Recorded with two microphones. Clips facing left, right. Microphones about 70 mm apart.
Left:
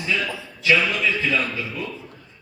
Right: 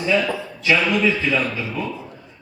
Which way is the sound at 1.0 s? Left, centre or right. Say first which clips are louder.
Right 3 dB; centre.